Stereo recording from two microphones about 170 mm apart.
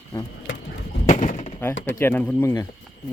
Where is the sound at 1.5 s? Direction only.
10° left (ahead or behind).